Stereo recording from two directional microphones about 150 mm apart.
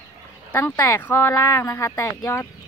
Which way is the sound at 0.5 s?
10° left (ahead or behind).